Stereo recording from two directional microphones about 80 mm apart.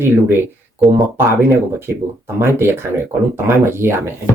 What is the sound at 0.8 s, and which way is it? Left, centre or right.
Speech, centre.